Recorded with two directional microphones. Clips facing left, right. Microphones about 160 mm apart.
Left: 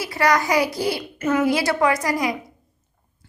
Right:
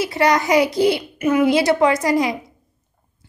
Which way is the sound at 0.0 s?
25° right (ahead or behind).